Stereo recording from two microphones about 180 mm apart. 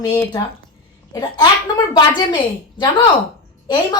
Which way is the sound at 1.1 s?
20° left (ahead or behind).